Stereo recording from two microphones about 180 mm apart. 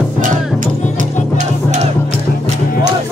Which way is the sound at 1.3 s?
40° right (ahead or behind).